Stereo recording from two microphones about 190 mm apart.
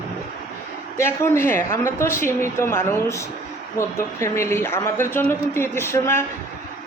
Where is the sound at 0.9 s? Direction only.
15° left (ahead or behind).